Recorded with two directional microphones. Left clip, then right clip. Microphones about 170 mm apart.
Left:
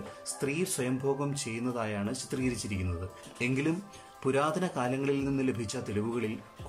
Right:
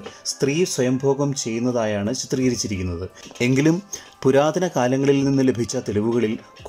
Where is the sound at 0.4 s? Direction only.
40° right (ahead or behind).